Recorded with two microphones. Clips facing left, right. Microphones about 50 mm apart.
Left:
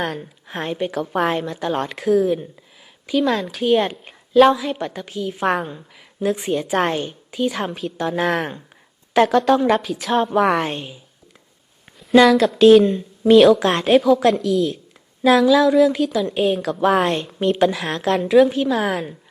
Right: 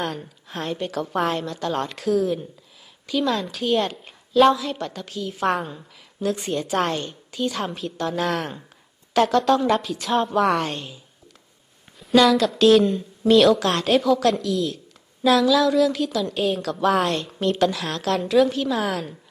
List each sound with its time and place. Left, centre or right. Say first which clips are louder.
0.0 s speech: left 3 dB; centre
0.4 s a woman's voice: left 4 dB; left
0.9 s a woman's voice: left 2 dB; centre
1.3 s a woman's voice: left 3 dB; centre
3.1 s speech: left 4 dB; centre
3.6 s a woman's voice: left 6 dB; centre
5.5 s a woman's voice: left 3 dB; centre; by 8.5 s left
9.2 s a woman's voice: left 3 dB; centre
10.3 s speech: left 3 dB; centre
12.2 s a woman's voice: left 4 dB; centre
12.5 s speech: left 6 dB; centre
14.3 s a woman's voice: left 5 dB; centre
16.6 s a woman's voice: left 3 dB; centre
16.8 s a woman's voice: left 3 dB; left